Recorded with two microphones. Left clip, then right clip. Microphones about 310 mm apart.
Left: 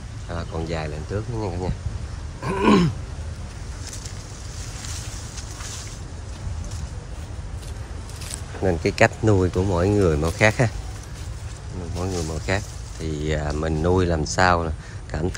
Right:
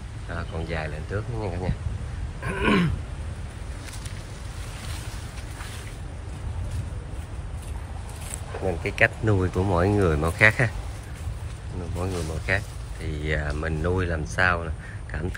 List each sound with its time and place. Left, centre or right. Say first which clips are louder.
0.3 s speech: left 3 dB; centre
8.8 s speech: left 3 dB; centre
12.0 s speech: left 3 dB; centre